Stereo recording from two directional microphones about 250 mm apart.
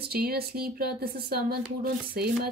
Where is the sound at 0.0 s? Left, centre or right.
Right.